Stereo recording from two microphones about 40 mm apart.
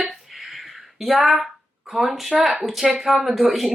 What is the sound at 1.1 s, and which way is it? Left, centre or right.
Speech, centre.